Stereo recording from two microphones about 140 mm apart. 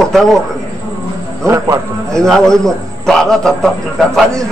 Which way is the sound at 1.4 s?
20° right (ahead or behind).